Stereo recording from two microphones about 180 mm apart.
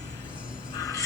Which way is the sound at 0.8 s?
15° left (ahead or behind).